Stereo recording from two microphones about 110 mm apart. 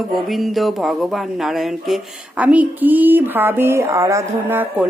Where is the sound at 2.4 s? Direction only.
15° right (ahead or behind).